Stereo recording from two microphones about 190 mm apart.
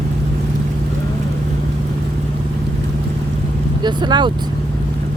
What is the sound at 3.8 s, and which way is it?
Speech, 25° right (ahead or behind).